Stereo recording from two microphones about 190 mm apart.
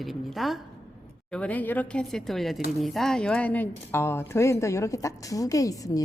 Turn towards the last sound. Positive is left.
turn(degrees=20)  # may be behind; listen again after turning